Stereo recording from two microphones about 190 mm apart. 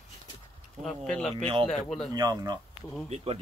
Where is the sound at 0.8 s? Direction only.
5° left (ahead or behind).